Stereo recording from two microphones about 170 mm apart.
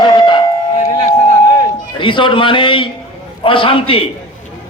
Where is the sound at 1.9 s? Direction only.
30° left (ahead or behind).